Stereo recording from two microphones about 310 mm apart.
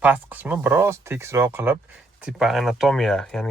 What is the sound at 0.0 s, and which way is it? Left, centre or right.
Speech, centre.